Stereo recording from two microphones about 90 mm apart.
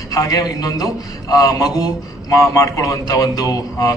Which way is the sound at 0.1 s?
40° left (ahead or behind).